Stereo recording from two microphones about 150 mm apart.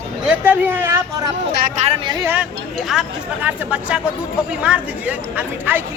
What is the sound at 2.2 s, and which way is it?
Speech, 15° right (ahead or behind).